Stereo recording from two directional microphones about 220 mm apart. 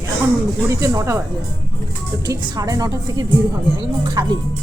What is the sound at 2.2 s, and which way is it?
A woman's voice, 15° right (ahead or behind).